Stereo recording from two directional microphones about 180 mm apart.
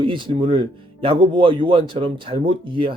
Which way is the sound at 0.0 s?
30° right (ahead or behind).